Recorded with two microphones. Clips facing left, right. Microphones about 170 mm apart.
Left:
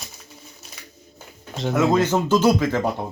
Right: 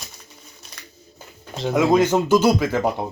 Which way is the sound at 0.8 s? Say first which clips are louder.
Even; 5° left (ahead or behind).